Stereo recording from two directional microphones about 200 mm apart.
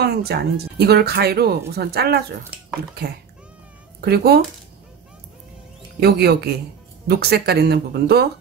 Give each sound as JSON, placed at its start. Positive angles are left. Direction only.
{"t": 0.0, "sound": "speech", "side_deg": -55}
{"t": 5.9, "sound": "speech", "side_deg": -55}